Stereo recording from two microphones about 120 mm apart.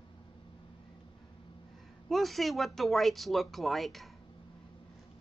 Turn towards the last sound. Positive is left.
turn(degrees=0)  # may be behind; listen again after turning